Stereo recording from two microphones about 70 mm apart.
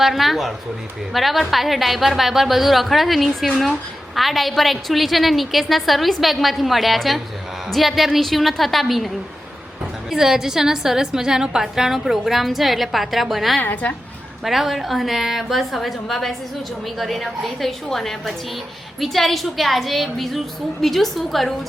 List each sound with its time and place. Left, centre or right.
0.0 s a woman's voice: centre
13.6 s a woman's voice: left
14.4 s a woman's voice: centre